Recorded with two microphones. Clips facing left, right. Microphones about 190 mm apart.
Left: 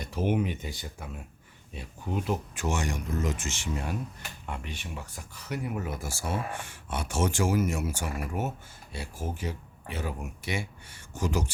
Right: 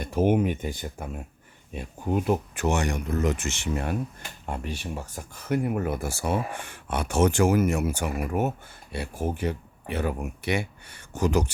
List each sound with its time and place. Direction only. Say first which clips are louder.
0.0 s speech: right 6 dB; 50° right (ahead or behind)
4.4 s speech: right 7 dB; 40° right (ahead or behind); by 11.5 s 65° right (ahead or behind)